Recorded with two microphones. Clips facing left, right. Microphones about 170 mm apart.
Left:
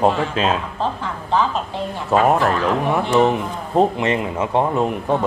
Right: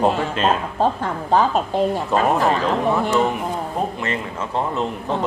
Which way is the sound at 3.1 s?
20° left (ahead or behind).